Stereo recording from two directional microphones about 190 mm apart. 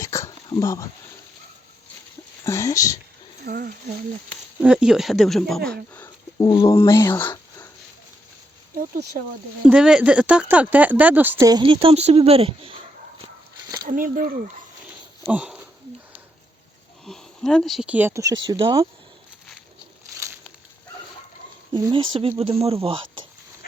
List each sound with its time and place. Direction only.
0.0 s a sound: 15° left (ahead or behind)
2.4 s speech: 15° left (ahead or behind)
3.4 s speech: 50° right (ahead or behind)
4.6 s speech: 5° right (ahead or behind)
6.4 s speech: 20° left (ahead or behind)
8.7 s speech: 50° right (ahead or behind)
9.6 s speech: 5° right (ahead or behind); by 12.7 s 30° right (ahead or behind)
13.8 s speech: 45° right (ahead or behind)
15.3 s speech: 5° right (ahead or behind)
17.1 s speech: centre (ahead or behind); by 18.9 s 20° right (ahead or behind)
21.7 s speech: 20° right (ahead or behind)